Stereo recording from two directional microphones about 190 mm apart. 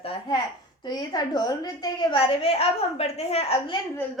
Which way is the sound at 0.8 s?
20° left (ahead or behind).